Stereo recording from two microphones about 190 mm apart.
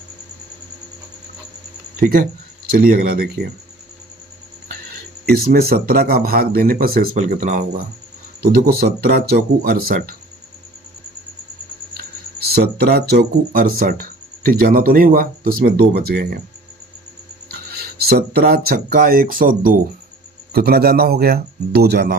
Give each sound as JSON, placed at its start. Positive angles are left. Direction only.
{"t": 2.0, "sound": "speech", "side_deg": -45}
{"t": 5.2, "sound": "speech", "side_deg": -50}
{"t": 12.5, "sound": "speech", "side_deg": -55}
{"t": 17.5, "sound": "speech", "side_deg": -55}